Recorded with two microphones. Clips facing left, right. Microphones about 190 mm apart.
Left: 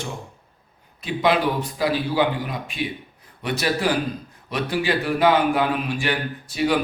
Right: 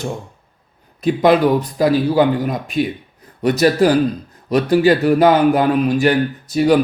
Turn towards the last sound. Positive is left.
turn(degrees=-40)  # may be behind; listen again after turning